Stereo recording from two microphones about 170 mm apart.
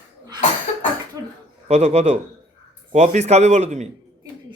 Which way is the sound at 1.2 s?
20° right (ahead or behind).